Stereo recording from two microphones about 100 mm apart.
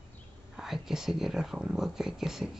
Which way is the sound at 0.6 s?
5° right (ahead or behind).